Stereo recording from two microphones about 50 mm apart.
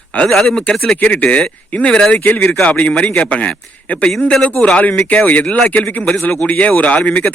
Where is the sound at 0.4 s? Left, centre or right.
Centre.